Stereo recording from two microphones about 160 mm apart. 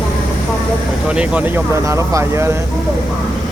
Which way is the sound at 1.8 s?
20° right (ahead or behind).